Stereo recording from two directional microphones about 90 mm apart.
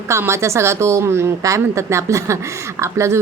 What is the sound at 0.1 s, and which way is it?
A woman's voice, 30° right (ahead or behind).